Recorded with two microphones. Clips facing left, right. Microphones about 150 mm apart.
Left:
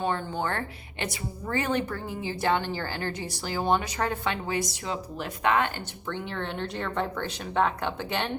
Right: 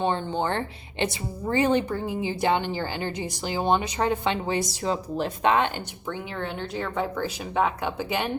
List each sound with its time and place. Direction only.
0.0 s speech: 25° right (ahead or behind)
6.1 s speech: 5° right (ahead or behind)